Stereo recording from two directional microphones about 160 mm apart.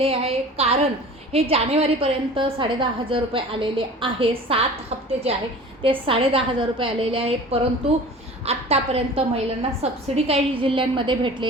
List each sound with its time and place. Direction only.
0.0 s a woman's voice: 35° right (ahead or behind)
5.8 s a woman's voice: 35° right (ahead or behind)